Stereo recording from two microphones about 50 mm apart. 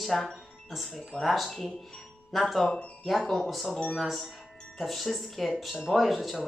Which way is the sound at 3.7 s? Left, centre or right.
Centre.